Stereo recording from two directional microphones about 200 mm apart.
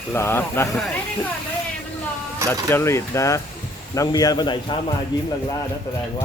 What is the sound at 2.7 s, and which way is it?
A man's voice, 15° left (ahead or behind).